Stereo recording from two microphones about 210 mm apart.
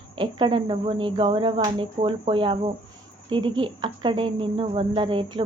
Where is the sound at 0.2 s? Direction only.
25° right (ahead or behind).